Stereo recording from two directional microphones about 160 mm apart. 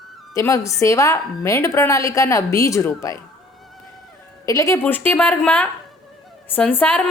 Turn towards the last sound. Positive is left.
turn(degrees=10)  # may be behind; listen again after turning